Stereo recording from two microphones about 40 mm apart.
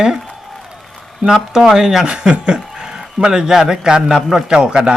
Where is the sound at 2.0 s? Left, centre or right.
Right.